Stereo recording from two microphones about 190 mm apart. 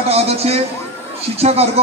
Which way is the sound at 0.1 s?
35° right (ahead or behind).